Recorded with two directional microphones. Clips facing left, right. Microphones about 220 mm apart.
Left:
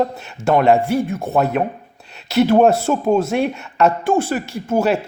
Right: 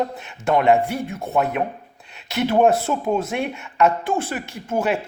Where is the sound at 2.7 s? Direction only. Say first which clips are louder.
Left 5 dB; 30° left (ahead or behind).